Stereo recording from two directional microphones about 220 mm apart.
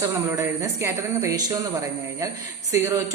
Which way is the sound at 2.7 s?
15° right (ahead or behind).